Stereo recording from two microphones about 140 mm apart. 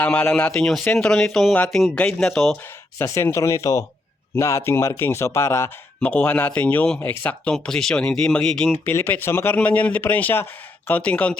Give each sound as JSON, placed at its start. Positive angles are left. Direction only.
{"t": 0.0, "sound": "speech", "side_deg": 10}
{"t": 3.0, "sound": "speech", "side_deg": 20}
{"t": 8.8, "sound": "speech", "side_deg": 20}